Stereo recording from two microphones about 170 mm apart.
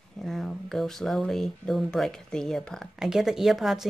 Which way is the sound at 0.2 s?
Centre (ahead or behind).